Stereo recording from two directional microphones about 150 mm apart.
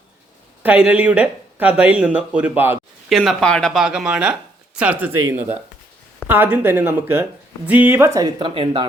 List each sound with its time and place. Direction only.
0.6 s speech: 10° right (ahead or behind)
3.1 s speech: centre (ahead or behind); by 8.9 s 35° right (ahead or behind)